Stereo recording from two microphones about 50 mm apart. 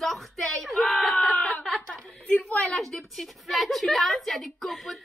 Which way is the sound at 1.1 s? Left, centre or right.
Left.